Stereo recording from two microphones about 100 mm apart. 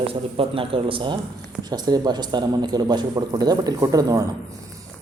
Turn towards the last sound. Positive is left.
turn(degrees=-35)  # may be behind; listen again after turning